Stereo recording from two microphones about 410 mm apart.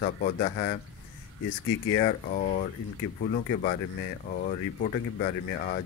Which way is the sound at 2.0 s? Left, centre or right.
Centre.